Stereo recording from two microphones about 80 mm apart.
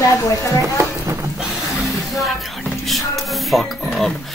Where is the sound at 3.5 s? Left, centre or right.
Centre.